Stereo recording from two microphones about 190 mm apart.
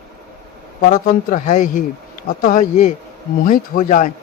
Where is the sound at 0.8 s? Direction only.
45° left (ahead or behind).